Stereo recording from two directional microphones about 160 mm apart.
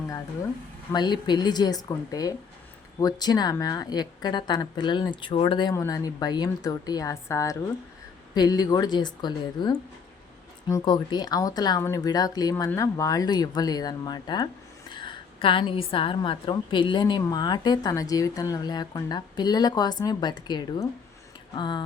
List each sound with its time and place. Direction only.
0.9 s a woman's voice: 25° left (ahead or behind)